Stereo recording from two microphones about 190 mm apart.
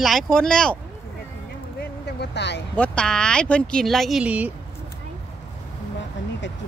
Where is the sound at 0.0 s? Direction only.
Centre (ahead or behind).